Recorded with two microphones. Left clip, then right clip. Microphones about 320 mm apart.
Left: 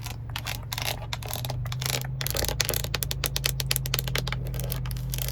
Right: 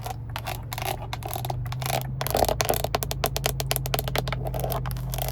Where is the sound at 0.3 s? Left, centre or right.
Centre.